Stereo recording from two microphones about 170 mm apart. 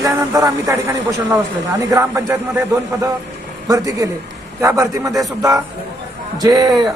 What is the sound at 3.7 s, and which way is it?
Speech, 20° right (ahead or behind).